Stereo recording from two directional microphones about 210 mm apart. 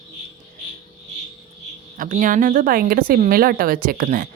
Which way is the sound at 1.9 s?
40° right (ahead or behind).